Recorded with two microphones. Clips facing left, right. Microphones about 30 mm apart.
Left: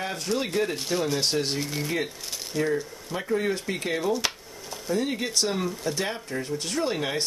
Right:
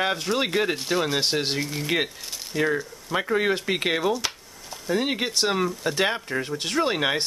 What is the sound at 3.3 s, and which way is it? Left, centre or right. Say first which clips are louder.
Speech: right 2 dB; right.